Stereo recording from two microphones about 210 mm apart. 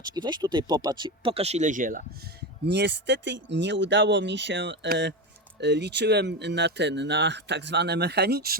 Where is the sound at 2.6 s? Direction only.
55° right (ahead or behind).